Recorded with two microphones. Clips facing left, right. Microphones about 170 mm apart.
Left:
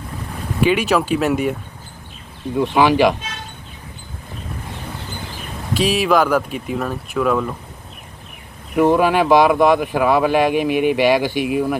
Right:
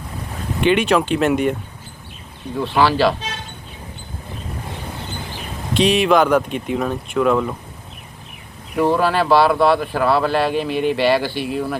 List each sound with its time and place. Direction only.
0.6 s speech: 5° left (ahead or behind)
2.6 s speech: 15° left (ahead or behind)
5.7 s speech: 5° left (ahead or behind)
8.8 s speech: 15° left (ahead or behind)